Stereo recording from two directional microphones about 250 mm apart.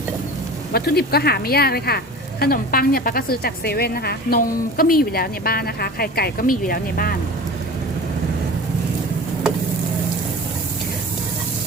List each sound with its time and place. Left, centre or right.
0.7 s a woman's voice: left